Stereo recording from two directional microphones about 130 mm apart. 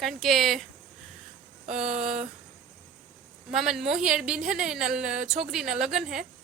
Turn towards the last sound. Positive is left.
turn(degrees=-5)  # may be behind; listen again after turning